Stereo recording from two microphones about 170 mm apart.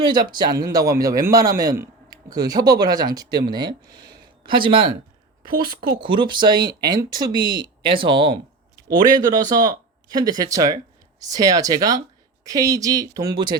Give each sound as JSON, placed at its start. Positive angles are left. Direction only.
{"t": 0.0, "sound": "speech", "side_deg": -25}
{"t": 5.4, "sound": "a sound", "side_deg": -25}
{"t": 6.0, "sound": "speech", "side_deg": -30}